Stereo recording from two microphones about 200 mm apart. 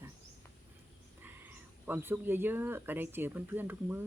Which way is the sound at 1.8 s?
10° right (ahead or behind).